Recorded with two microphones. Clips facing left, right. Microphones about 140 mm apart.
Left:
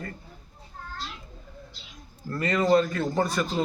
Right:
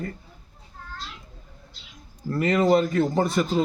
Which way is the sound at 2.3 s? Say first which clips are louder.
Right 2 dB; 20° right (ahead or behind).